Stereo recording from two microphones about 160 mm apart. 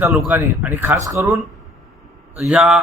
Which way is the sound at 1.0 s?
20° right (ahead or behind).